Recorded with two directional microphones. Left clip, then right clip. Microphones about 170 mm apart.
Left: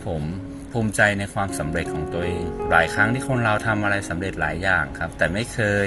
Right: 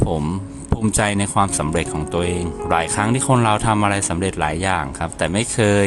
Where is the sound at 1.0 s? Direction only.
40° right (ahead or behind).